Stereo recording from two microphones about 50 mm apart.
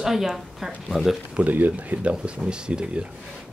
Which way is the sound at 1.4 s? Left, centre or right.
Right.